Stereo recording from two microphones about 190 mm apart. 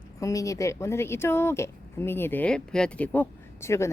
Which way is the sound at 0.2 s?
15° left (ahead or behind).